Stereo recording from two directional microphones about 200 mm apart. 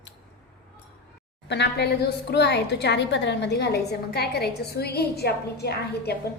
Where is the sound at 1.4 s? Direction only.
60° left (ahead or behind).